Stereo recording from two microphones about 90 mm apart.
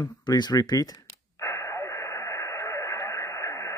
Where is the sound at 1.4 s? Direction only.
35° left (ahead or behind).